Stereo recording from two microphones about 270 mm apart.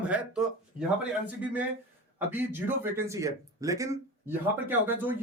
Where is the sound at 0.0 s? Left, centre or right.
Centre.